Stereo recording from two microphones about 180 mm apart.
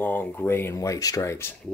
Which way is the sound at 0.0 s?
10° left (ahead or behind).